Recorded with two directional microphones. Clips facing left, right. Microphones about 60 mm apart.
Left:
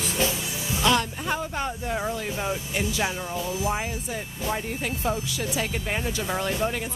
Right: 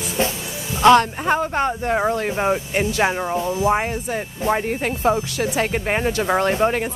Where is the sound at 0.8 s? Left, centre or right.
Right.